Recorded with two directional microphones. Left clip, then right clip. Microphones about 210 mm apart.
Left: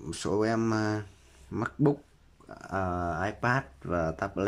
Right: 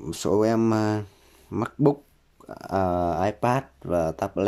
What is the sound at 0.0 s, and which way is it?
Speech, 15° right (ahead or behind).